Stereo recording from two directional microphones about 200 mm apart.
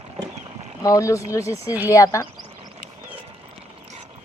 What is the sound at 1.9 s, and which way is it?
Speech, 15° left (ahead or behind).